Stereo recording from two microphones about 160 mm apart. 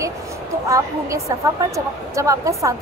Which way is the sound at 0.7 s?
20° right (ahead or behind).